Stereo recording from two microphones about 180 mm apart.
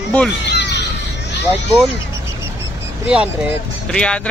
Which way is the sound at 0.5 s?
70° left (ahead or behind).